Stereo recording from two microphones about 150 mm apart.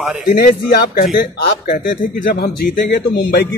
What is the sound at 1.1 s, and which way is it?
A man's voice, 65° left (ahead or behind).